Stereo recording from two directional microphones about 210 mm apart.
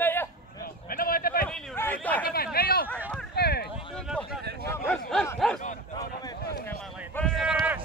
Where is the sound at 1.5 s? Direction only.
Centre (ahead or behind).